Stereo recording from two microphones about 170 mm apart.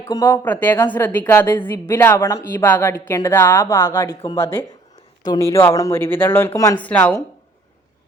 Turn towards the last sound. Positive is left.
turn(degrees=10)  # may be behind; listen again after turning